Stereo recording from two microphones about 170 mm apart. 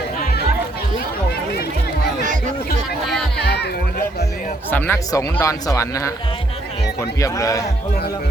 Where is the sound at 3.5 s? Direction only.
75° left (ahead or behind).